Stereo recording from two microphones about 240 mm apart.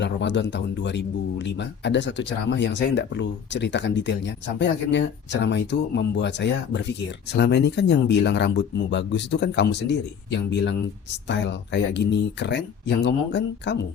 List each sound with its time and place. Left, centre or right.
0.0 s speech: left